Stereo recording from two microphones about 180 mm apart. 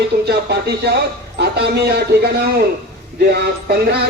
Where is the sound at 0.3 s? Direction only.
65° right (ahead or behind).